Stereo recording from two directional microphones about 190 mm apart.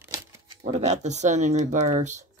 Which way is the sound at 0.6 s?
35° right (ahead or behind).